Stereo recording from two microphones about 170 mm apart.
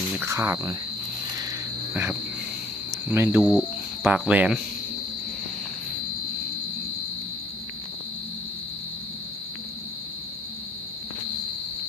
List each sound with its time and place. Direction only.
0.3 s speech: 15° right (ahead or behind)
1.9 s wild animals: 15° right (ahead or behind)
3.1 s speech: 10° right (ahead or behind)